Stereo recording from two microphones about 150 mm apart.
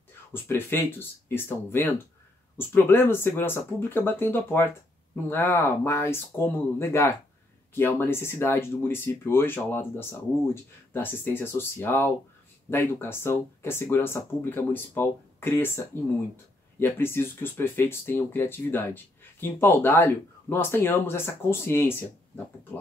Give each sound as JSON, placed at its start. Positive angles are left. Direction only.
{"t": 0.3, "sound": "speech", "side_deg": 15}